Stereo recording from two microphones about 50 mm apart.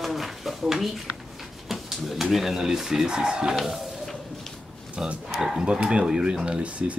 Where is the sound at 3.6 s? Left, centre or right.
Centre.